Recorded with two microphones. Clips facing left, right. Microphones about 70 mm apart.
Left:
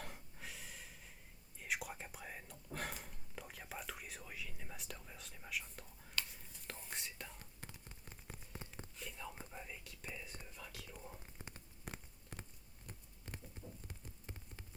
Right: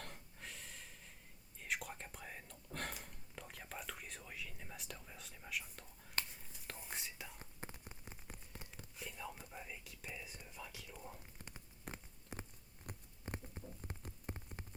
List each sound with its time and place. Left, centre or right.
0.0 s snort: centre
1.5 s whispering: centre
7.3 s whispering: right
8.0 s a sound: centre
8.5 s a sound: centre
9.0 s whispering: centre
11.9 s a sound: centre
12.9 s patter: right
14.3 s rain on surface: right